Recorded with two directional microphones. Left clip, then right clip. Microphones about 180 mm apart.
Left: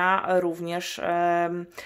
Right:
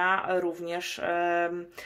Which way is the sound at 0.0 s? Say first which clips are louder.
Left 4 dB; 25° left (ahead or behind).